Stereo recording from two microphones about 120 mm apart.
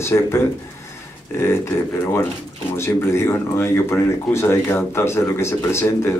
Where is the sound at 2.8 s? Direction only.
20° left (ahead or behind).